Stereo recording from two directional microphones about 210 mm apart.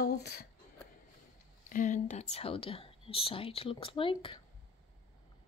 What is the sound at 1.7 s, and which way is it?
Speech, 40° left (ahead or behind).